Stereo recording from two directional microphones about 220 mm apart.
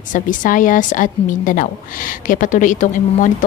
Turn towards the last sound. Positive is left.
turn(degrees=35)  # may be behind; listen again after turning